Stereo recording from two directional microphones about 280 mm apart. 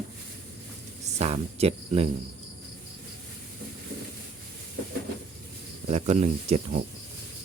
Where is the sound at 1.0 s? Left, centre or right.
Right.